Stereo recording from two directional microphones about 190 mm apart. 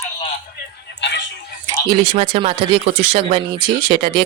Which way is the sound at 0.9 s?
65° left (ahead or behind).